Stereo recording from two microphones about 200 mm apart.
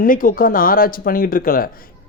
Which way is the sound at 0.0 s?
45° left (ahead or behind).